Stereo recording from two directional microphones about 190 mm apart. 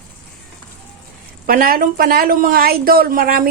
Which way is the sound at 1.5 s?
50° right (ahead or behind).